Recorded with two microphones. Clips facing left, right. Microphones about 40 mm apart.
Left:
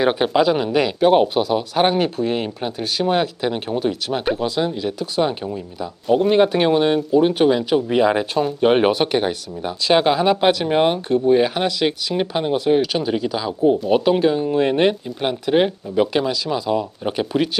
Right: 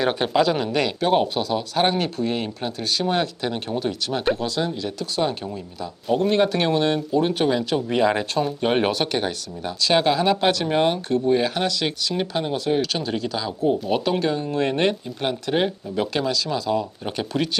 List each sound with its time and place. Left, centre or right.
0.0 s speech: centre